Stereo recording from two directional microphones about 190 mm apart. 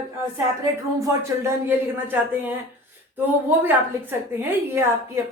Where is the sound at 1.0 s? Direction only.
15° right (ahead or behind).